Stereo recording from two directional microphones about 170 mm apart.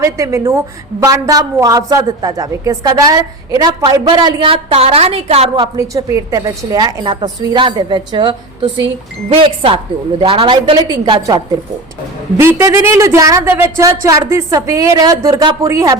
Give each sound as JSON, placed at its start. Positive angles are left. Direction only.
{"t": 0.0, "sound": "a woman's voice", "side_deg": -15}
{"t": 5.7, "sound": "a woman's voice", "side_deg": -20}
{"t": 12.4, "sound": "a woman's voice", "side_deg": -15}